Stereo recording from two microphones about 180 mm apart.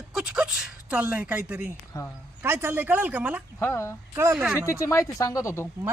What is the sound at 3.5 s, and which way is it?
Speech, 15° left (ahead or behind).